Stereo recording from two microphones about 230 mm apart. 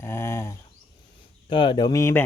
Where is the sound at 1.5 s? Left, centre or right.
Left.